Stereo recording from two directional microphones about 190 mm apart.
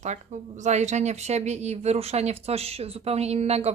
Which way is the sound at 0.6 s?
35° right (ahead or behind).